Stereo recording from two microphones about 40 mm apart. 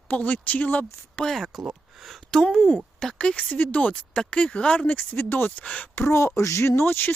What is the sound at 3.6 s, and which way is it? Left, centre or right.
Speech, left.